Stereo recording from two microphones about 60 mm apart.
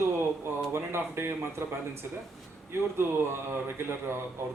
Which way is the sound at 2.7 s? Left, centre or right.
Right.